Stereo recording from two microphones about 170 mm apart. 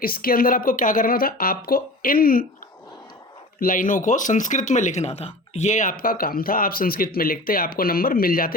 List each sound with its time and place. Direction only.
0.0 s speech: 60° left (ahead or behind)
3.6 s speech: 55° left (ahead or behind)